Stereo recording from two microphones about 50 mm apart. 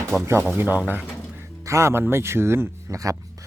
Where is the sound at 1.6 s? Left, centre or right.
Right.